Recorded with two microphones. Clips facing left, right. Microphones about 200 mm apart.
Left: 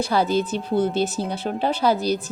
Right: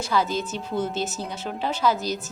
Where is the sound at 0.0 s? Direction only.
35° left (ahead or behind).